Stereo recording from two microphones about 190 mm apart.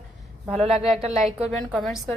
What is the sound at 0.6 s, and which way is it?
Speech, 35° right (ahead or behind).